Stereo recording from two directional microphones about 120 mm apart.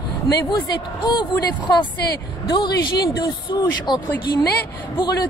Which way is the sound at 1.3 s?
25° left (ahead or behind).